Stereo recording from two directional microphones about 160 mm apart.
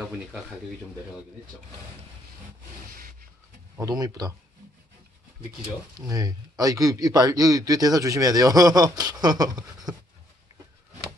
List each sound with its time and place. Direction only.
2.9 s a sound: 60° right (ahead or behind)
3.7 s a man's voice: 20° right (ahead or behind)
5.9 s a man's voice: 20° right (ahead or behind)